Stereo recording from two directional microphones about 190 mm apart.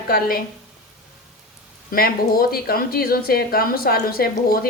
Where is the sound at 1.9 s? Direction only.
50° left (ahead or behind).